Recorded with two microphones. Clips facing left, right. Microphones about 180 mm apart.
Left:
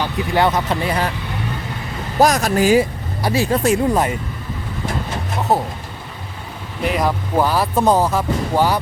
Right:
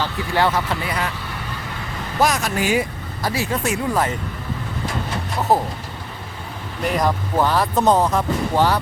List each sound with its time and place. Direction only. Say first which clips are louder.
0.0 s speech: left 3 dB; 20° left (ahead or behind)
0.9 s speech: left 4 dB; 30° left (ahead or behind)
2.1 s speech: left 5 dB; 40° left (ahead or behind)
5.5 s speech: even; centre (ahead or behind)
6.8 s speech: left 1 dB; 5° left (ahead or behind)